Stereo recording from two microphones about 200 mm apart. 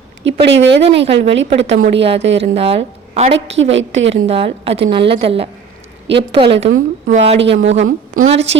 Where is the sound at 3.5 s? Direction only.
65° right (ahead or behind).